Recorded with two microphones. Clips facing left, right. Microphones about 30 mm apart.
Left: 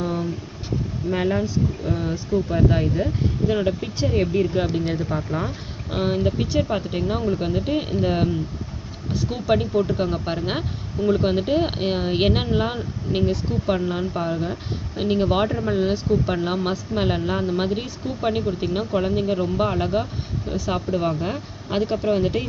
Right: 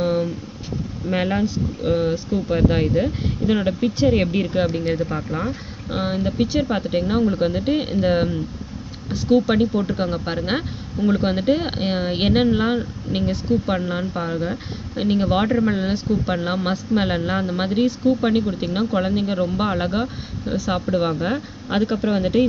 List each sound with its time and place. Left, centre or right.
1.1 s speech: right
1.4 s speech: right
2.3 s speech: right
3.5 s speech: centre
4.0 s speech: right
4.5 s speech: centre
9.3 s speech: centre; by 21.8 s right
21.8 s speech: centre